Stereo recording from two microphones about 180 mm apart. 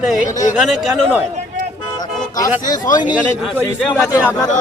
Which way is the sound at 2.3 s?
20° left (ahead or behind).